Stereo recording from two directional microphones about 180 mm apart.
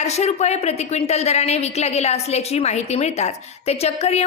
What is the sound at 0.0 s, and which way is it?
A woman's voice, 40° left (ahead or behind).